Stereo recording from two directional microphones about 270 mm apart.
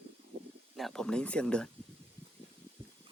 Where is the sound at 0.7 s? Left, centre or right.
Centre.